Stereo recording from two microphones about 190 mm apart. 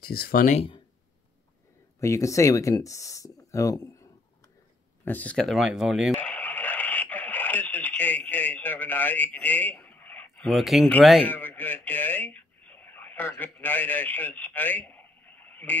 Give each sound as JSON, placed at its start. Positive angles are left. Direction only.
{"t": 0.0, "sound": "speech", "side_deg": 55}
{"t": 2.0, "sound": "speech", "side_deg": 15}
{"t": 5.0, "sound": "speech", "side_deg": 10}
{"t": 6.2, "sound": "radio", "side_deg": 10}
{"t": 11.3, "sound": "speech", "side_deg": 10}